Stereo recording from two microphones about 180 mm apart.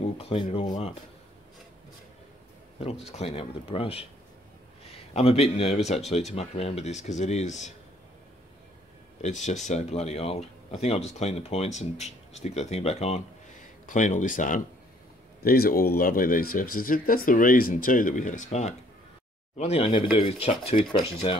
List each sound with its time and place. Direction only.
0.2 s speech: 30° left (ahead or behind)
3.1 s speech: 35° left (ahead or behind)
5.1 s speech: 35° left (ahead or behind)
9.2 s speech: 40° left (ahead or behind)
15.4 s speech: 60° left (ahead or behind); by 21.4 s 30° left (ahead or behind)